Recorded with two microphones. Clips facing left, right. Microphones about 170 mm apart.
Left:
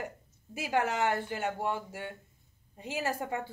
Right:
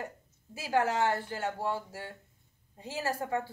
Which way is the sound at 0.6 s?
20° left (ahead or behind).